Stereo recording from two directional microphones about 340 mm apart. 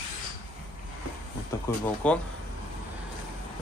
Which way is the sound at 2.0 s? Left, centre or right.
Centre.